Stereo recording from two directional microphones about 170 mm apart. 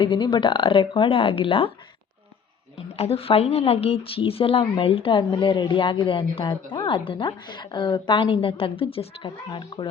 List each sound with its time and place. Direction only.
0.0 s a woman's voice: 30° left (ahead or behind)
3.0 s a woman's voice: 35° left (ahead or behind)